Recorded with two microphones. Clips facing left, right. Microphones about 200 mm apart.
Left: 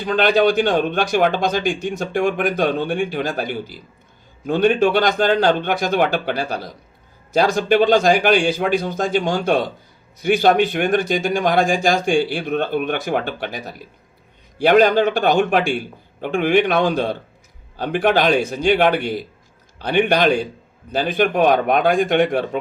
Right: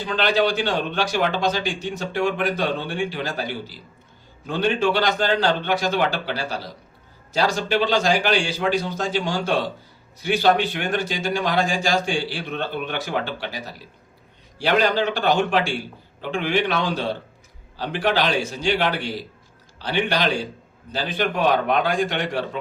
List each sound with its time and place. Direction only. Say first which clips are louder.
0.0 s a man's voice: left 5 dB; 50° left (ahead or behind)